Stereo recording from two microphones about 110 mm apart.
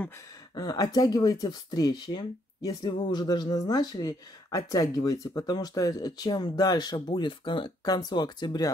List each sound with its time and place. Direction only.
0.6 s speech: 35° left (ahead or behind)